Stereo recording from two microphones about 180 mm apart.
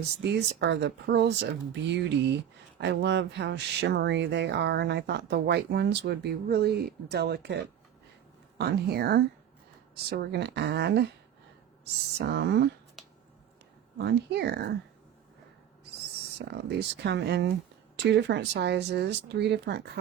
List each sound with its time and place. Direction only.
0.2 s speech: 75° right (ahead or behind)
12.1 s speech: 70° right (ahead or behind)
14.0 s speech: 65° right (ahead or behind)
16.5 s speech: 65° right (ahead or behind)